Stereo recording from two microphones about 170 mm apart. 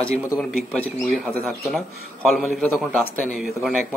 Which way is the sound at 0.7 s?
Centre (ahead or behind).